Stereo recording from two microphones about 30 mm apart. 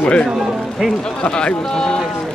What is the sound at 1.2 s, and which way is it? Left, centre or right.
Speech, left.